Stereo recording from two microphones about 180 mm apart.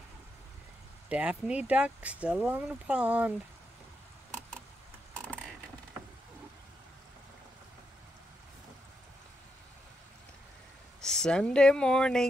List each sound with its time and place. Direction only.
1.0 s speech: 5° right (ahead or behind)
11.0 s speech: 5° left (ahead or behind)